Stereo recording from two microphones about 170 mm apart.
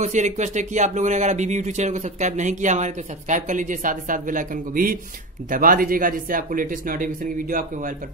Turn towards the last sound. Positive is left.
turn(degrees=-55)  # may be behind; listen again after turning